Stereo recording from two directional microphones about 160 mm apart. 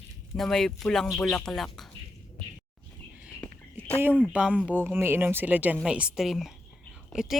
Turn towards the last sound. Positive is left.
turn(degrees=0)  # may be behind; listen again after turning